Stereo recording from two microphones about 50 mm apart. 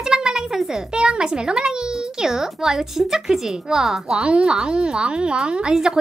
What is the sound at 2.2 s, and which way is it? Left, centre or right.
A child's voice, centre.